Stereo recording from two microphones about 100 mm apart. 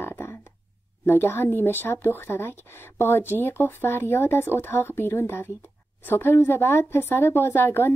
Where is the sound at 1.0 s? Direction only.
20° left (ahead or behind).